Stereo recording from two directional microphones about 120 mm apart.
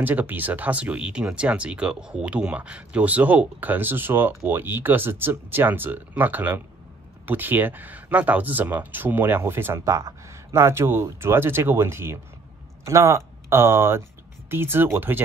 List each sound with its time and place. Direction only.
0.0 s speech: 15° right (ahead or behind)